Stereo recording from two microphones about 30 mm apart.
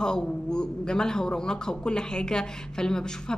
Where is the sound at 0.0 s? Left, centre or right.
Left.